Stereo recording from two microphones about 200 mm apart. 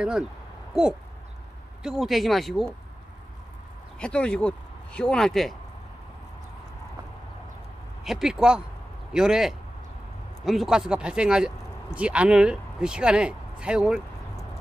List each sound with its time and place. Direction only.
1.8 s speech: centre (ahead or behind)
4.0 s speech: 5° left (ahead or behind)
8.0 s speech: centre (ahead or behind)